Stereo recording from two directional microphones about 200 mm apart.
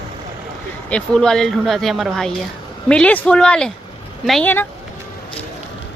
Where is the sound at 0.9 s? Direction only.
5° left (ahead or behind).